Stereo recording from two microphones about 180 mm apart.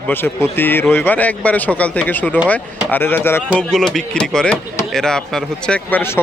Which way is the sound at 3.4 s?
Centre (ahead or behind).